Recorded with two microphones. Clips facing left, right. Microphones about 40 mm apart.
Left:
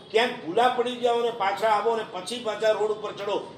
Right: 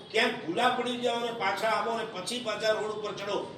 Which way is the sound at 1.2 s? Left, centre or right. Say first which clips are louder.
Left 5 dB; centre.